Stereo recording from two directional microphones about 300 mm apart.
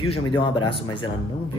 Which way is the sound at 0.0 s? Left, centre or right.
Centre.